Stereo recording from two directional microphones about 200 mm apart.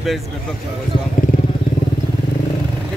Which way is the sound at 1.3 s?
45° left (ahead or behind).